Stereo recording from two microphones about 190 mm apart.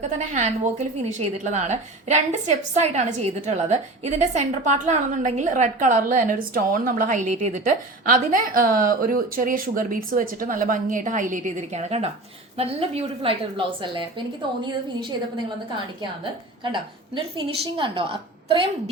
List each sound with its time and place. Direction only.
0.3 s a woman's voice: 40° right (ahead or behind)
16.7 s a woman's voice: 25° right (ahead or behind)